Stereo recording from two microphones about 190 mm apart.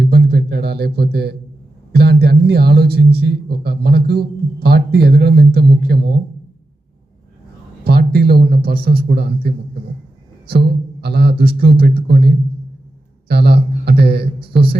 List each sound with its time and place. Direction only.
0.0 s a sound: 55° right (ahead or behind)
1.9 s speech: 55° right (ahead or behind)
7.9 s speech: 55° right (ahead or behind)